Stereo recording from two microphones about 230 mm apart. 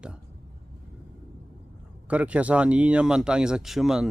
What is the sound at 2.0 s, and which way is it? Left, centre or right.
Speech, centre.